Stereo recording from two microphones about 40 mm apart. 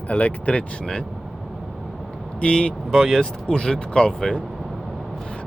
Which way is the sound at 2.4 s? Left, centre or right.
Left.